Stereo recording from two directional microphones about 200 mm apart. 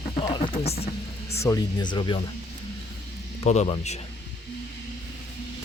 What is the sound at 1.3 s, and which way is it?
Speech, 15° left (ahead or behind).